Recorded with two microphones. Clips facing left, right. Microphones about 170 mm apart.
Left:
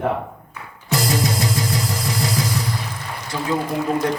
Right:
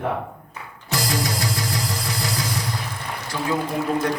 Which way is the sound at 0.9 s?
25° left (ahead or behind).